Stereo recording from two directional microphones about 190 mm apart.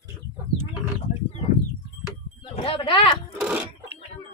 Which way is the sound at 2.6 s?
30° left (ahead or behind).